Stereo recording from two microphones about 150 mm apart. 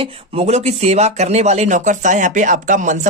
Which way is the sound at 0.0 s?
45° right (ahead or behind).